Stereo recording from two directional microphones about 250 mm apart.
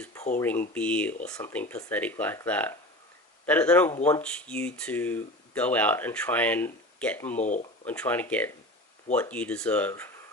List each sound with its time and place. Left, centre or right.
0.0 s a sound: centre
0.3 s speech: centre
7.4 s speech: left
7.9 s speech: centre